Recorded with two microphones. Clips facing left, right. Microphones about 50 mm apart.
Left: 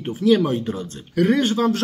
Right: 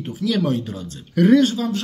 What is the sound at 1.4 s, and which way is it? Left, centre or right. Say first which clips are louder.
Speech: even; left.